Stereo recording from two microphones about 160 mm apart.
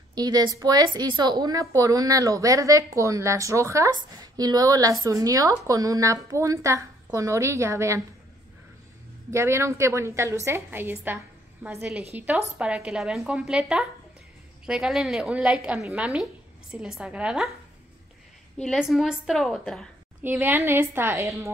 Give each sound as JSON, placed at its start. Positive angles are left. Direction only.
{"t": 0.1, "sound": "a woman's voice", "side_deg": -25}
{"t": 9.3, "sound": "a woman's voice", "side_deg": -15}
{"t": 18.6, "sound": "a woman's voice", "side_deg": 0}
{"t": 20.2, "sound": "a woman's voice", "side_deg": -15}